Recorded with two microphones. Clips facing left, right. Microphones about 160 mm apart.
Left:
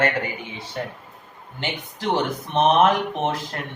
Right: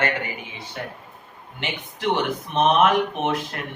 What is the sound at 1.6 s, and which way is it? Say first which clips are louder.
Speech: left 1 dB; 35° left (ahead or behind).